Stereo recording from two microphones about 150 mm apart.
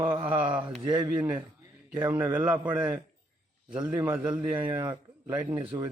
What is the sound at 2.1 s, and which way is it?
A man's voice, 15° right (ahead or behind).